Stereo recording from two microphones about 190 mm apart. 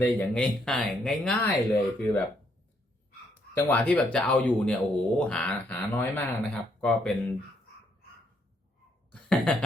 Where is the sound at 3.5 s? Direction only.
10° left (ahead or behind).